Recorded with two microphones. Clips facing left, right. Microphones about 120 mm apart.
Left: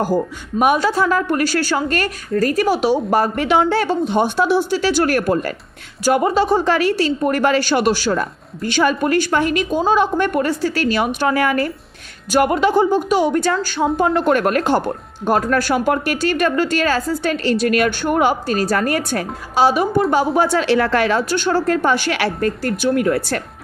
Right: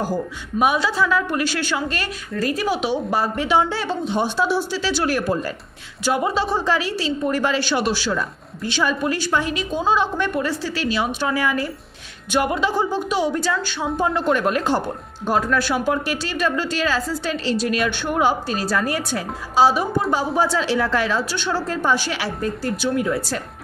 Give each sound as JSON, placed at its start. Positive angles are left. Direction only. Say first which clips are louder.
{"t": 0.6, "sound": "a woman's voice", "louder": "left 4 dB", "side_deg": 50}
{"t": 6.0, "sound": "a woman's voice", "louder": "left 6 dB", "side_deg": 50}
{"t": 13.9, "sound": "a woman's voice", "louder": "left 3 dB", "side_deg": 60}